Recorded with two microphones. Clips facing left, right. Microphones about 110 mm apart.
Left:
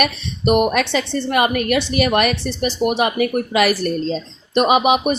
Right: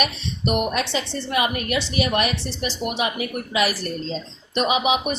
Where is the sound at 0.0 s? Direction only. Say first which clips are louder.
Left 5 dB; 55° left (ahead or behind).